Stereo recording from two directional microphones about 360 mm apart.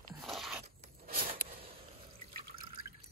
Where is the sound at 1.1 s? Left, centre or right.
Right.